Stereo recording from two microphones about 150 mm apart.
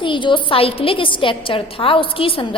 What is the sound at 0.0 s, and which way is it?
A woman's voice, 35° left (ahead or behind).